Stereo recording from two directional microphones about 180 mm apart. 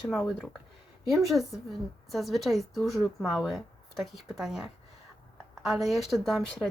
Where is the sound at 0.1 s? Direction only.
Centre (ahead or behind).